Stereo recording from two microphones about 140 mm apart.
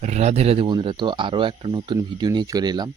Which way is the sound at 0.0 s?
55° right (ahead or behind).